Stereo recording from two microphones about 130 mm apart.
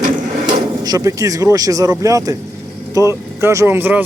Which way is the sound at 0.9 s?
25° right (ahead or behind).